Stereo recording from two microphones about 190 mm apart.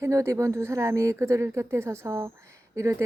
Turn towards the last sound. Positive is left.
turn(degrees=-15)  # may be behind; listen again after turning